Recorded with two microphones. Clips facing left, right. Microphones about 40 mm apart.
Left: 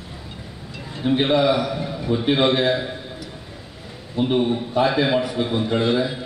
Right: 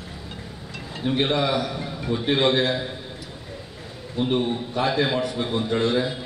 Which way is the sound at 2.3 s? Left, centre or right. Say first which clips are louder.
Left 1 dB; centre.